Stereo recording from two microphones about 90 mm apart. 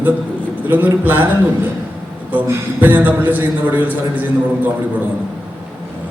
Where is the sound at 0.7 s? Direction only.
20° right (ahead or behind).